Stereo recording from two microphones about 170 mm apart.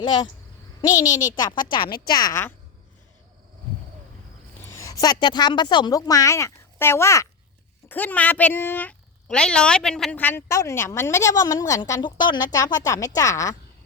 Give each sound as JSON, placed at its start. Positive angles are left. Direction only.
{"t": 0.0, "sound": "speech", "side_deg": 30}
{"t": 4.8, "sound": "a woman's voice", "side_deg": 20}